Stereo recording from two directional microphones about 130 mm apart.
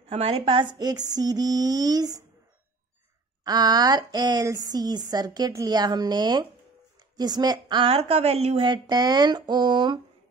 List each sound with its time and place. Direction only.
0.1 s a woman's voice: 50° right (ahead or behind); by 1.0 s 30° right (ahead or behind)
1.1 s a sound: 30° right (ahead or behind)
3.4 s a woman's voice: 30° right (ahead or behind)
7.9 s a woman's voice: 50° right (ahead or behind)
8.6 s a woman's voice: 35° right (ahead or behind)